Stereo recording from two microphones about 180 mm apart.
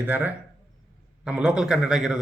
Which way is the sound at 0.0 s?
10° right (ahead or behind).